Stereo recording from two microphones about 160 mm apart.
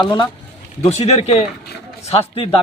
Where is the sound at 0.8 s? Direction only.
40° left (ahead or behind).